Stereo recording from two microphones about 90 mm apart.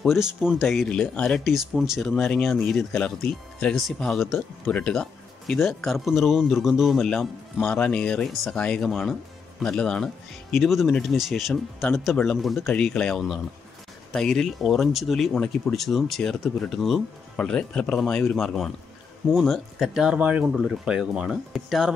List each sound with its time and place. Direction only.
0.2 s speech: 5° right (ahead or behind)
0.8 s speech: 10° left (ahead or behind)
1.5 s speech: 5° right (ahead or behind); by 5.0 s 10° left (ahead or behind)
5.5 s speech: centre (ahead or behind)
20.2 s speech: 20° right (ahead or behind)
20.5 s speech: 5° right (ahead or behind)